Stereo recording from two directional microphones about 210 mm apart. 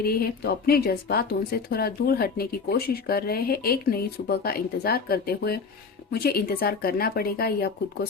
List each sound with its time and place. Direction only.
0.0 s a woman's voice: 45° left (ahead or behind)